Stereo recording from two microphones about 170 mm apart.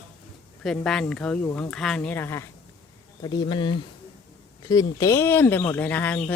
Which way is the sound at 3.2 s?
25° left (ahead or behind).